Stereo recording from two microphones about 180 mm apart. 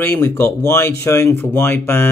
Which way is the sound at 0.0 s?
15° left (ahead or behind).